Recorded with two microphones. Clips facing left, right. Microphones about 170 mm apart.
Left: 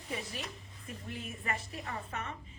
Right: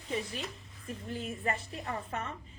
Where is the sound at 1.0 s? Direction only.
35° right (ahead or behind).